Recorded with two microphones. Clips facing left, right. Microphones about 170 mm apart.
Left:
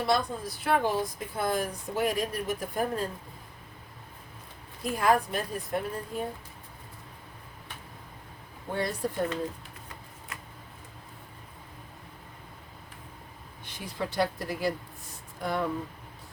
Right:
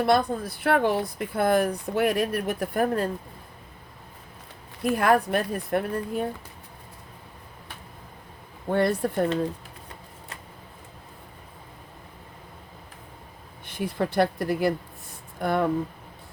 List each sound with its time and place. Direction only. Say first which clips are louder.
0.0 s speech: right 6 dB; 60° right (ahead or behind)
4.8 s speech: right 4 dB; 65° right (ahead or behind)
8.7 s speech: right 7 dB; 60° right (ahead or behind)
13.7 s speech: right 7 dB; 55° right (ahead or behind)